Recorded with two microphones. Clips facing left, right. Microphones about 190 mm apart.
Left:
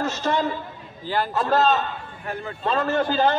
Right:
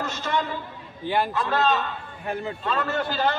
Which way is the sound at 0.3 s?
35° left (ahead or behind).